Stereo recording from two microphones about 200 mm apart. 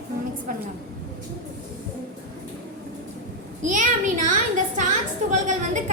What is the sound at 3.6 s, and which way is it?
A child's voice, 40° right (ahead or behind).